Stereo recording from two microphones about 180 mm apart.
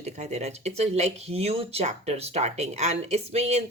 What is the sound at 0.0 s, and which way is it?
Speech, 40° right (ahead or behind).